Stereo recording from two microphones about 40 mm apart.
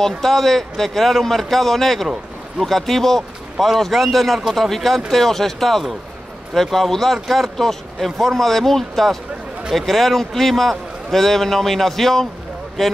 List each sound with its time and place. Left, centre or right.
0.2 s a man's voice: centre